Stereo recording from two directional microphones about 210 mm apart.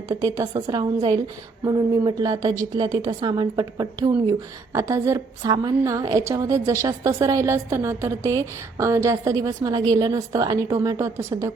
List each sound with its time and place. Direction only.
0.1 s a woman's voice: 15° right (ahead or behind)